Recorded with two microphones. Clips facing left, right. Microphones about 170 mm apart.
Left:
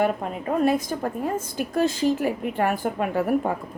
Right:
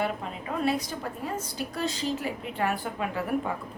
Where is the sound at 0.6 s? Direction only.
45° left (ahead or behind).